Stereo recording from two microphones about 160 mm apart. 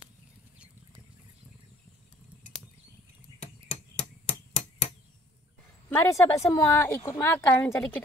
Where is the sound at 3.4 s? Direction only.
45° left (ahead or behind).